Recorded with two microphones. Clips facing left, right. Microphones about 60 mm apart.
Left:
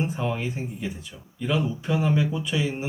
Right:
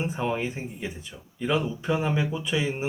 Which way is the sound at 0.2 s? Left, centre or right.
Centre.